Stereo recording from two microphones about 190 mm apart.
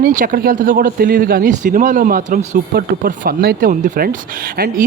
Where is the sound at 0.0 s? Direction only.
45° right (ahead or behind).